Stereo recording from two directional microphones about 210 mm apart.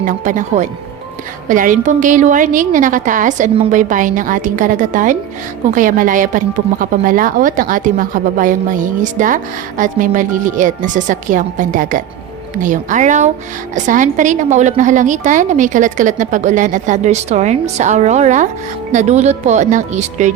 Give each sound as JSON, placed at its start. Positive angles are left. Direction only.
{"t": 0.0, "sound": "a woman's voice", "side_deg": -40}